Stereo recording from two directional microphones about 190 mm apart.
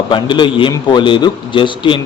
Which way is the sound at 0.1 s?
25° left (ahead or behind).